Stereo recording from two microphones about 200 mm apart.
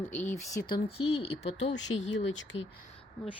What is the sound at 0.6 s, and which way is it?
Speech, 25° left (ahead or behind).